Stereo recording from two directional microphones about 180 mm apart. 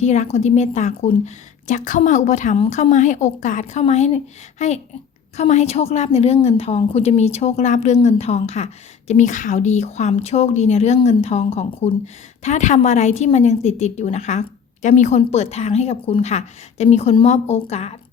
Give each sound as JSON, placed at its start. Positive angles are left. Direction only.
{"t": 0.0, "sound": "a woman's voice", "side_deg": 40}